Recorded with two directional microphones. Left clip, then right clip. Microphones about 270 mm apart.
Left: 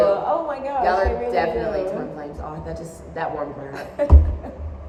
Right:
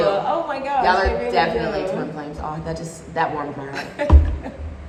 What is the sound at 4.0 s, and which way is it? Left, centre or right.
Speech, centre.